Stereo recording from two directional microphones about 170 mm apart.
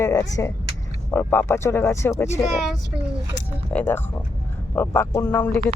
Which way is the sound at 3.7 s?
10° left (ahead or behind).